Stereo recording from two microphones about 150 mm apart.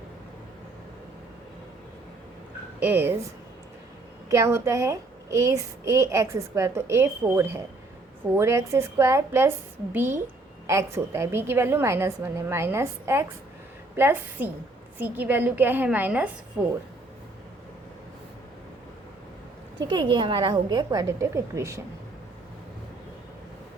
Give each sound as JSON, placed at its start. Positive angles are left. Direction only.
{"t": 2.8, "sound": "a woman's voice", "side_deg": -15}
{"t": 4.3, "sound": "a child's voice", "side_deg": -20}
{"t": 19.9, "sound": "a child's voice", "side_deg": -30}